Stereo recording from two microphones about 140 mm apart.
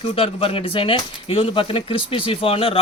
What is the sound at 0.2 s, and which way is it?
Speech, 40° left (ahead or behind).